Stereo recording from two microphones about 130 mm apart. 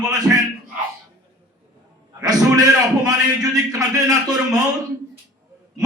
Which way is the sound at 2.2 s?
25° right (ahead or behind).